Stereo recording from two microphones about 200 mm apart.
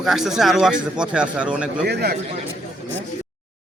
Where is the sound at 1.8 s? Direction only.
55° right (ahead or behind).